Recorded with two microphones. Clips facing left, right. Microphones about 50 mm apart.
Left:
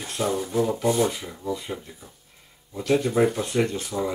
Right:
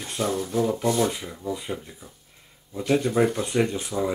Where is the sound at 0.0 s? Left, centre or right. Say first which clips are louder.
Left 1 dB; centre.